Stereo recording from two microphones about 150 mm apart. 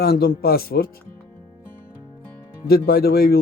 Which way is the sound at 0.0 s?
85° left.